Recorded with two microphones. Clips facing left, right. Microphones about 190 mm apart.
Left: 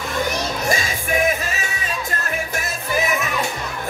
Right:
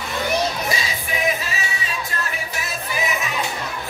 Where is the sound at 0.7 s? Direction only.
50° left (ahead or behind).